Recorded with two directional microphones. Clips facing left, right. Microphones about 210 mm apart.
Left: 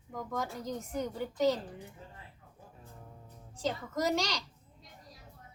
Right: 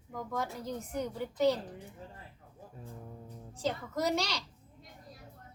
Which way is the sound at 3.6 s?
Centre (ahead or behind).